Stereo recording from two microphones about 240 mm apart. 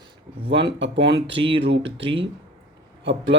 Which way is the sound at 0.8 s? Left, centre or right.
Right.